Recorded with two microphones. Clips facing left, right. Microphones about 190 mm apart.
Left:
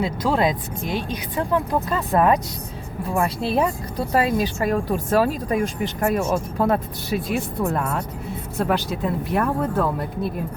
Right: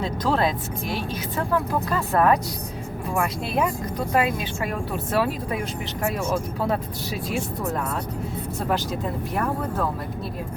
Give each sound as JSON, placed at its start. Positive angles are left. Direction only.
{"t": 0.0, "sound": "speech", "side_deg": 10}
{"t": 3.2, "sound": "speech", "side_deg": 35}
{"t": 8.5, "sound": "speech", "side_deg": 65}